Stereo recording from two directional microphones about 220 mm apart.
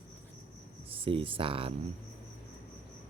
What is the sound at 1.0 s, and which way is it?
Speech, 25° right (ahead or behind).